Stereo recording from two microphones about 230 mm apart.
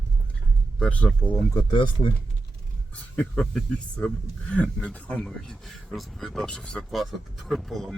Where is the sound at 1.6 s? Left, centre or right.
Left.